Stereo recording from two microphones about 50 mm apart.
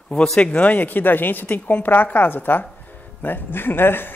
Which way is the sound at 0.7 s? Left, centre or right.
Left.